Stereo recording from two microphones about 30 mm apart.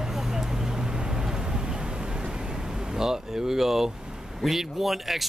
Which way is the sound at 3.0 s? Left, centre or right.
Centre.